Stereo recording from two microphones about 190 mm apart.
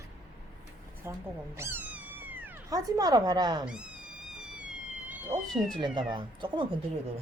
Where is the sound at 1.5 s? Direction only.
10° right (ahead or behind).